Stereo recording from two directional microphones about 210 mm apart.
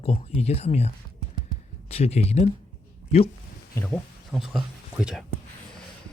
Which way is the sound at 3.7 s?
5° left (ahead or behind).